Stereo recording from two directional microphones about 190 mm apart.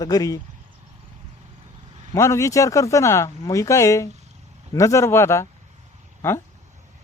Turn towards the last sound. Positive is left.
turn(degrees=10)  # may be behind; listen again after turning